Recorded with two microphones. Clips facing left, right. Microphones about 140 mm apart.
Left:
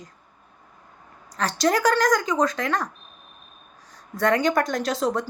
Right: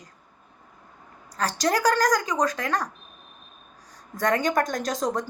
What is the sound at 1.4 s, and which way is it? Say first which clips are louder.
A woman's voice: left 2 dB; 35° right (ahead or behind).